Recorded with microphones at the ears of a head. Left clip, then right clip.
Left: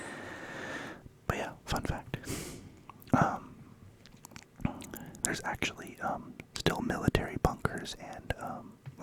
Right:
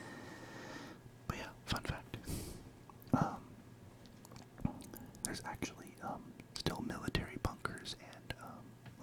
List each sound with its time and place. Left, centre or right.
0.0 s whispering: left